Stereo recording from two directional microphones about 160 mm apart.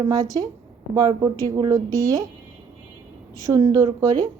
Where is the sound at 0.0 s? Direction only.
25° right (ahead or behind).